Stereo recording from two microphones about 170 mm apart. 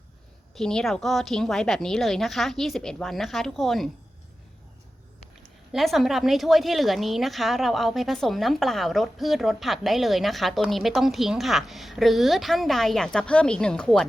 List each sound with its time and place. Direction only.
0.5 s a woman's voice: 5° left (ahead or behind)
5.7 s a woman's voice: centre (ahead or behind)